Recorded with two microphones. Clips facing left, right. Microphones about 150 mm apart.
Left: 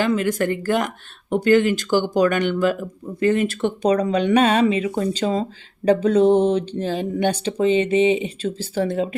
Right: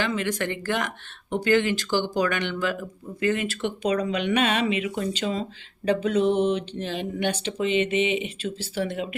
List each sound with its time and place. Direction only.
0.0 s speech: 45° left (ahead or behind)